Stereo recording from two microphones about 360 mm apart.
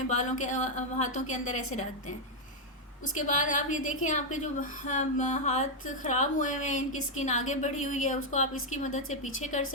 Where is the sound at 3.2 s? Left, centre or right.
Left.